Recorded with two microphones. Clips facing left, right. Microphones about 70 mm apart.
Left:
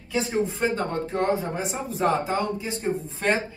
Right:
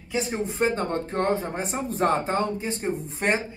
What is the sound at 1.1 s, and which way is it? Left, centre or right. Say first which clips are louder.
Speech: left 1 dB; right.